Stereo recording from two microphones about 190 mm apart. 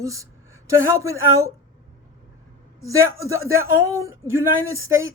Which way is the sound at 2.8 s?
15° right (ahead or behind).